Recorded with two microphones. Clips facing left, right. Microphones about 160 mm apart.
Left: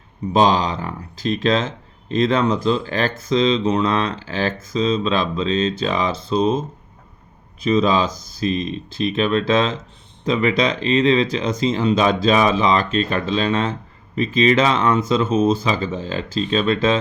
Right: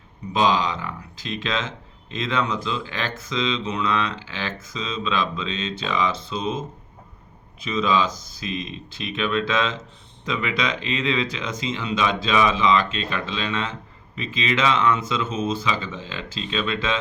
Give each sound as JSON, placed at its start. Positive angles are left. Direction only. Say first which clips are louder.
{"t": 0.3, "sound": "speech", "louder": "left 4 dB", "side_deg": 35}
{"t": 7.6, "sound": "speech", "louder": "left 5 dB", "side_deg": 35}